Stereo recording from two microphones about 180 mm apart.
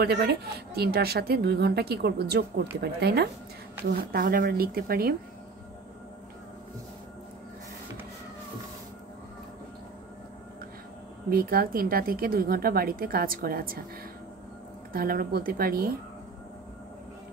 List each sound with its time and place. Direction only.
0.0 s a woman's voice: 60° right (ahead or behind)
11.2 s a woman's voice: 55° right (ahead or behind)
14.9 s a woman's voice: 55° right (ahead or behind)